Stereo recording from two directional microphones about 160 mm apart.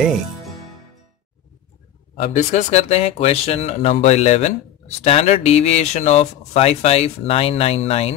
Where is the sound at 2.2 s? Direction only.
50° left (ahead or behind).